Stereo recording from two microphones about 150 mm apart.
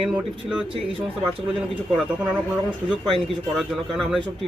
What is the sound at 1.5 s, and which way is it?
Speech, centre (ahead or behind).